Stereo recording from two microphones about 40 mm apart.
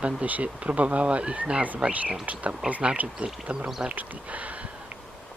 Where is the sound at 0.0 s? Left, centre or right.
Right.